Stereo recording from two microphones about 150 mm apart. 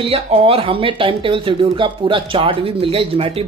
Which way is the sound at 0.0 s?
40° right (ahead or behind).